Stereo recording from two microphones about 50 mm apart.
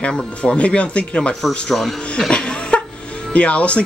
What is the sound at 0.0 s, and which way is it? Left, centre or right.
Speech, centre.